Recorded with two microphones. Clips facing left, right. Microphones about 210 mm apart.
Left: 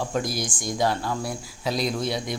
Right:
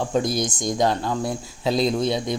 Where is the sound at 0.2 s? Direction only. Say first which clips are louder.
Right 5 dB; 25° right (ahead or behind).